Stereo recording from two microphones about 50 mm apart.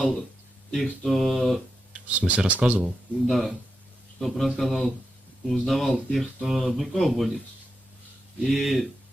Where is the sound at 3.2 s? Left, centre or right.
Centre.